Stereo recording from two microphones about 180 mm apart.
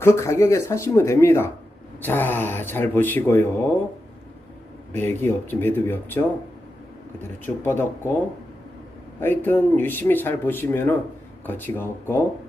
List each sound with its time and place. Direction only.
0.0 s speech: 15° left (ahead or behind)
4.9 s speech: 10° left (ahead or behind)
9.2 s speech: 10° left (ahead or behind)